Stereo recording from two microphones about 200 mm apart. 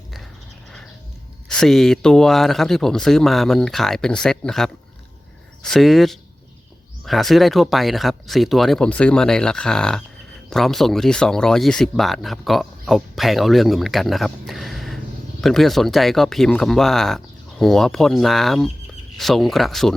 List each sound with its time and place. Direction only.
1.5 s speech: centre (ahead or behind)